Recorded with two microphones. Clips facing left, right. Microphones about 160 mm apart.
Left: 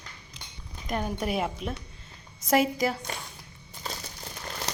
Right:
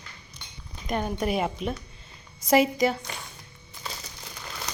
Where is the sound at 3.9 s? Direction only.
40° left (ahead or behind).